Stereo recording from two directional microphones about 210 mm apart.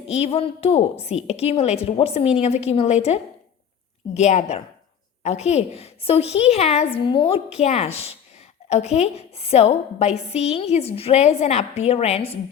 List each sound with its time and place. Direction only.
0.1 s a woman's voice: 30° left (ahead or behind)